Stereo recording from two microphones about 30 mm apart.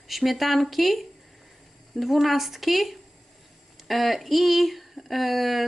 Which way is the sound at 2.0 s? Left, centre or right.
Centre.